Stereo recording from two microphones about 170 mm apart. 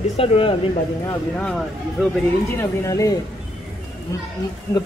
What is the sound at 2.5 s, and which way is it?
Speech, 15° left (ahead or behind).